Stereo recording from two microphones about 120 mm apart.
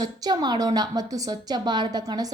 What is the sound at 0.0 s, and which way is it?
A woman's voice, 35° right (ahead or behind).